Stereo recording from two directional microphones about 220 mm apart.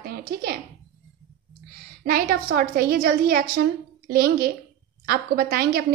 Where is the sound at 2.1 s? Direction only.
45° right (ahead or behind).